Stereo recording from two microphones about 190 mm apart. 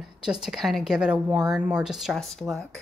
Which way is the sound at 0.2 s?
5° right (ahead or behind).